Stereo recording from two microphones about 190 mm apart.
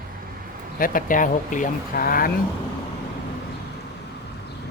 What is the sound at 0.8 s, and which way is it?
Speech, 45° left (ahead or behind).